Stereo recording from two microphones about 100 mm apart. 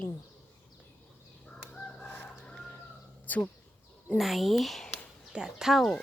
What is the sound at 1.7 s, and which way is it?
Chicken, 10° left (ahead or behind).